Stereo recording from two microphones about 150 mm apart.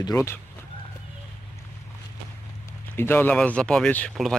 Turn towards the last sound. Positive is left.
turn(degrees=5)  # may be behind; listen again after turning